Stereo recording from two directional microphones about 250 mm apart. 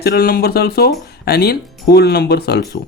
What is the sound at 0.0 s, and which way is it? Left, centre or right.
Speech, left.